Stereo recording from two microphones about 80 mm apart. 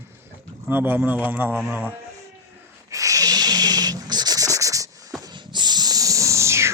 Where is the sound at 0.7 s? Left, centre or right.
Right.